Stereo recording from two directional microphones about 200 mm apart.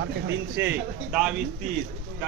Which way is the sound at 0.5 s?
10° right (ahead or behind).